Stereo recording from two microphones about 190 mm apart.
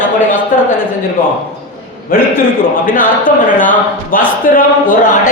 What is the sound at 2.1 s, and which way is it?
A woman's voice, 50° left (ahead or behind).